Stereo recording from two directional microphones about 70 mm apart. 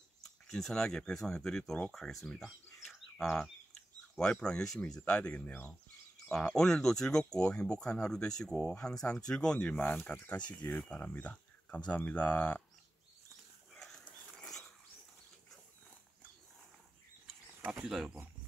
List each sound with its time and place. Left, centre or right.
0.5 s speech: centre
13.7 s dog: centre
17.3 s a sound: centre
17.8 s speech: centre